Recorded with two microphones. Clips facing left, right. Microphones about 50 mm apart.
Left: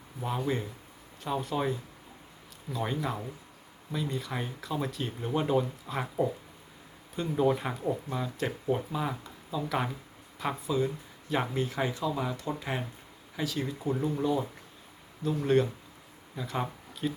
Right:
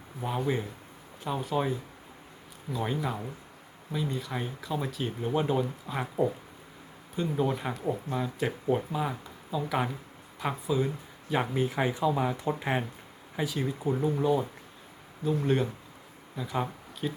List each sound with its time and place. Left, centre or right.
0.2 s speech: centre
2.7 s speech: centre
8.1 s speech: centre